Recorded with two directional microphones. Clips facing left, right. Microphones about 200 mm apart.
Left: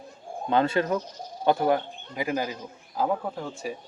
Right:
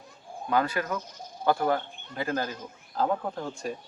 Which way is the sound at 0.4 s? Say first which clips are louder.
Left 4 dB; 25° left (ahead or behind).